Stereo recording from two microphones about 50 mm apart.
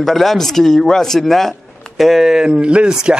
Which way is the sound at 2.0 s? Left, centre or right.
Centre.